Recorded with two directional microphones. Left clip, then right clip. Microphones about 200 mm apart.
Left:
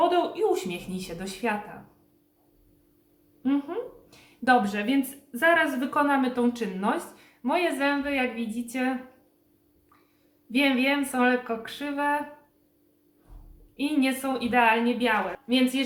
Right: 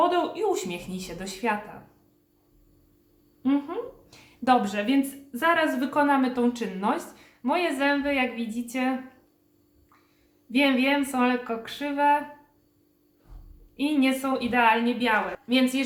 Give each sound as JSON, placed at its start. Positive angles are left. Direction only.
{"t": 0.0, "sound": "speech", "side_deg": 0}
{"t": 3.4, "sound": "speech", "side_deg": 0}
{"t": 10.5, "sound": "speech", "side_deg": 0}
{"t": 13.7, "sound": "speech", "side_deg": 0}